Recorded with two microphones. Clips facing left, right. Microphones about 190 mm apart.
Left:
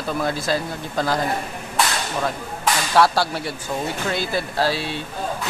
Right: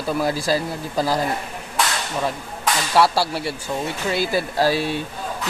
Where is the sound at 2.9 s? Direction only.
5° right (ahead or behind).